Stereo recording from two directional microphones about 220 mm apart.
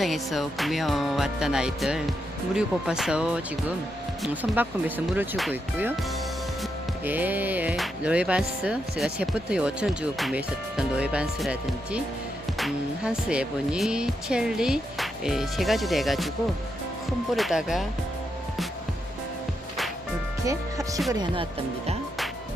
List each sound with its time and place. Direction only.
0.0 s music: centre (ahead or behind)
4.2 s speech: 10° right (ahead or behind)
6.6 s music: 10° right (ahead or behind)
17.3 s music: centre (ahead or behind)
20.4 s music: 15° right (ahead or behind)